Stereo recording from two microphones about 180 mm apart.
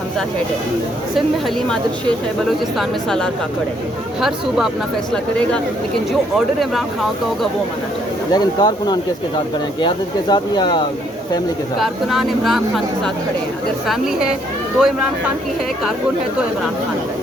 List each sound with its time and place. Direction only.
2.7 s speech: centre (ahead or behind)
8.3 s speech: 25° left (ahead or behind)
11.8 s speech: centre (ahead or behind)
13.8 s speech: centre (ahead or behind)